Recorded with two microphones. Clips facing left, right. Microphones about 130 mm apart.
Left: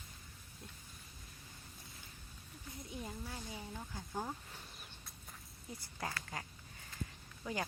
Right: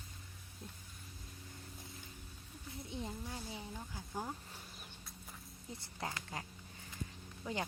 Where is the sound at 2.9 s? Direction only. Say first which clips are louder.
Right 2 dB; 25° right (ahead or behind).